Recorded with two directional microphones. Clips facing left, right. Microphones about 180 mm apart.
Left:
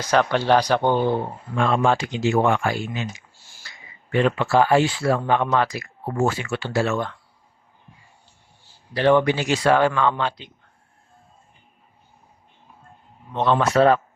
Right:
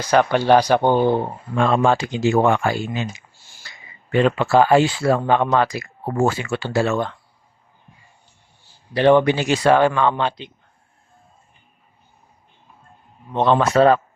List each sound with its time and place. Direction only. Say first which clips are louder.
0.1 s speech: right 3 dB; 10° right (ahead or behind)
1.1 s speech: right 3 dB; 35° right (ahead or behind)
4.2 s speech: right 3 dB; 30° right (ahead or behind)
8.9 s speech: right 3 dB; 20° right (ahead or behind)
13.3 s speech: right 3 dB; 25° right (ahead or behind)